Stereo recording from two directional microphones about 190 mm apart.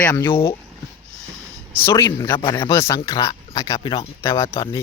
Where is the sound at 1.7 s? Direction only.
15° left (ahead or behind).